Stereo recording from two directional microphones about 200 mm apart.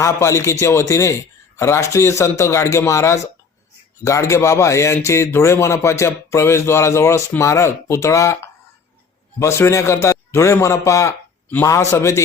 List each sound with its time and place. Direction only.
0.0 s speech: 15° left (ahead or behind)